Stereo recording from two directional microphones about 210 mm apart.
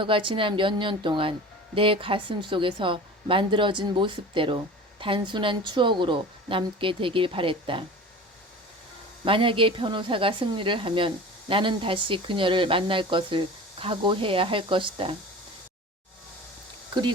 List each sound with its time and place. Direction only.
0.0 s speech: 25° right (ahead or behind)
9.2 s speech: 25° right (ahead or behind)